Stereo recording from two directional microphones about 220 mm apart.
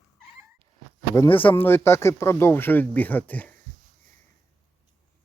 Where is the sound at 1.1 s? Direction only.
10° left (ahead or behind).